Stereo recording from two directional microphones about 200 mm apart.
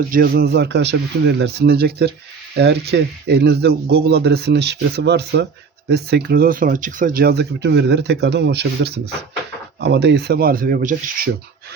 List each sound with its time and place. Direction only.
0.1 s speech: 50° right (ahead or behind)